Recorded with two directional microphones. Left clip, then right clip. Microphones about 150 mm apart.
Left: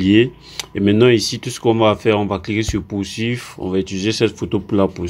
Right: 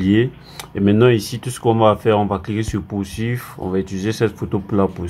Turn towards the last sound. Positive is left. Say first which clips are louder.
# left 2 dB
turn(degrees=30)  # may be behind; listen again after turning